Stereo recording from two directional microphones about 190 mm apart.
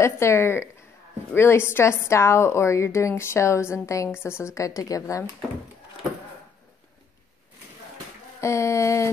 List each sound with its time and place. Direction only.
0.0 s a woman's voice: 15° left (ahead or behind)
8.4 s a woman's voice: 15° left (ahead or behind)